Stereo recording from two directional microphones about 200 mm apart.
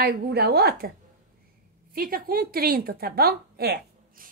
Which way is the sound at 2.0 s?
45° right (ahead or behind).